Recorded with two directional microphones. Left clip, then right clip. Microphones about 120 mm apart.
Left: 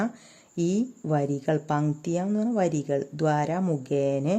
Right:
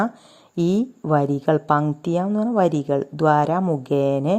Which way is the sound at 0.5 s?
20° right (ahead or behind).